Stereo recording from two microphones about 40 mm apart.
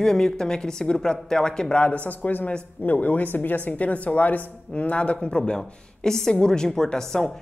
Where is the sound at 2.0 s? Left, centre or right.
Left.